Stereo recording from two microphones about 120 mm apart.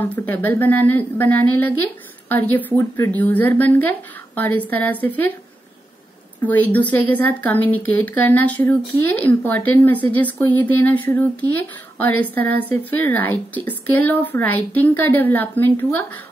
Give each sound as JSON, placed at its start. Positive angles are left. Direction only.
{"t": 0.0, "sound": "a woman's voice", "side_deg": 15}
{"t": 6.4, "sound": "a woman's voice", "side_deg": 15}